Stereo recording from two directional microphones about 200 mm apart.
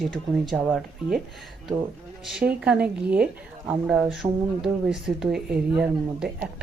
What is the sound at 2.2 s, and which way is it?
A woman's voice, 5° right (ahead or behind).